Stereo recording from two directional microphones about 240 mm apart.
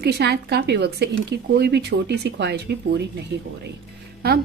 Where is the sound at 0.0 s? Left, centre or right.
Right.